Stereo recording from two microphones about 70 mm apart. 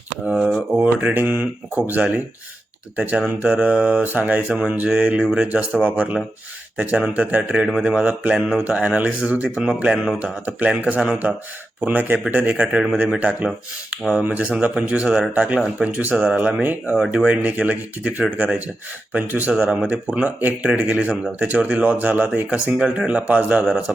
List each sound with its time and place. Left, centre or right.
0.3 s speech: centre
0.8 s speech: right
8.4 s speech: centre
8.6 s speech: centre